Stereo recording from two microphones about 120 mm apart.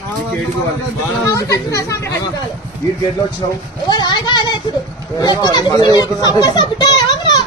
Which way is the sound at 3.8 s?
35° left (ahead or behind).